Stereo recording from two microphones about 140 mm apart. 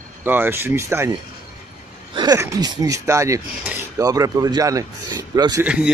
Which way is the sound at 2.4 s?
25° right (ahead or behind).